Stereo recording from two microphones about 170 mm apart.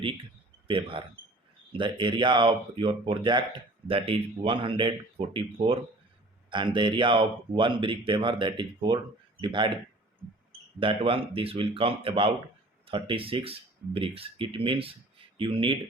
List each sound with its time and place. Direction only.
0.7 s speech: 30° right (ahead or behind)
10.8 s speech: 30° right (ahead or behind)